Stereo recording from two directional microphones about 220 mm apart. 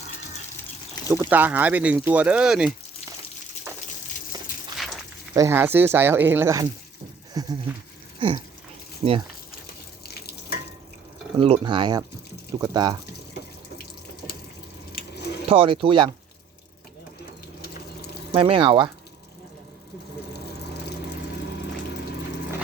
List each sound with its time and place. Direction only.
1.0 s speech: 15° right (ahead or behind)
3.7 s a sound: 10° right (ahead or behind)
4.8 s a sound: centre (ahead or behind)
5.3 s speech: 15° right (ahead or behind)
9.0 s speech: 20° right (ahead or behind)
11.3 s speech: 25° right (ahead or behind)
15.4 s speech: 25° right (ahead or behind)
18.3 s speech: 25° right (ahead or behind)